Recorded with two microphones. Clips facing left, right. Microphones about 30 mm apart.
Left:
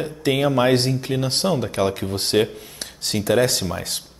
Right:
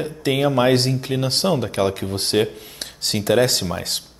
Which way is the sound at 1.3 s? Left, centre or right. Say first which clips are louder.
Right 2 dB; right.